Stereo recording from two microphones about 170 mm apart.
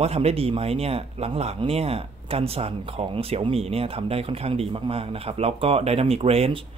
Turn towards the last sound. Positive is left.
turn(degrees=-35)  # may be behind; listen again after turning